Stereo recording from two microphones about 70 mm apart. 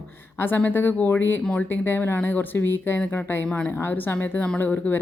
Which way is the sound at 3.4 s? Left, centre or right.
Centre.